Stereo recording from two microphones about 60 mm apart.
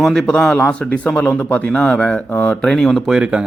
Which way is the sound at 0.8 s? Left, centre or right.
Left.